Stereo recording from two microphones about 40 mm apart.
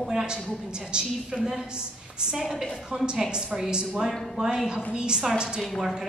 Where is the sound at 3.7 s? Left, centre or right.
Centre.